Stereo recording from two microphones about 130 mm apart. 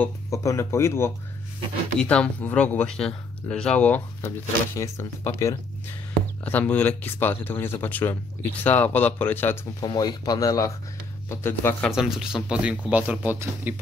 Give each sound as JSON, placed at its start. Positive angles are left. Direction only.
{"t": 0.0, "sound": "speech", "side_deg": 25}
{"t": 2.0, "sound": "speech", "side_deg": 10}
{"t": 4.7, "sound": "speech", "side_deg": 20}
{"t": 9.8, "sound": "speech", "side_deg": 30}
{"t": 11.9, "sound": "speech", "side_deg": -5}